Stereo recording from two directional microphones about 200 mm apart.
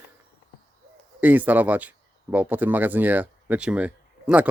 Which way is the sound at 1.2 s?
10° right (ahead or behind).